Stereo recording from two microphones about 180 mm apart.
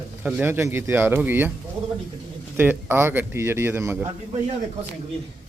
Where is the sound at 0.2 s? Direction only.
10° right (ahead or behind).